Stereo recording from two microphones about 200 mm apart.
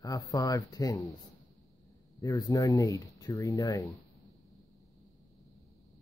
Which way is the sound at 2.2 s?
15° left (ahead or behind).